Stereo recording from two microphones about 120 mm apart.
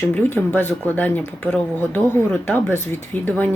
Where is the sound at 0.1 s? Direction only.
15° left (ahead or behind).